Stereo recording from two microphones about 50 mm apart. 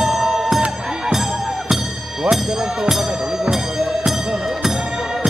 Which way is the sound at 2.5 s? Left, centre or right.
Centre.